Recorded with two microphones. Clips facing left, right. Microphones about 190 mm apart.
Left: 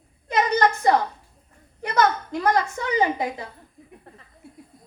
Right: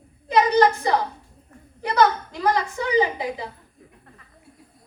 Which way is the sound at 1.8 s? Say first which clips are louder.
Right 2 dB; 50° left (ahead or behind).